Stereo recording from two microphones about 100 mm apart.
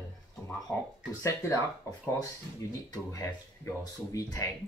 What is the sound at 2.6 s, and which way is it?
Speech, 30° left (ahead or behind).